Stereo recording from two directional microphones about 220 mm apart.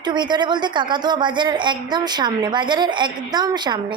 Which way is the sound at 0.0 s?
20° right (ahead or behind).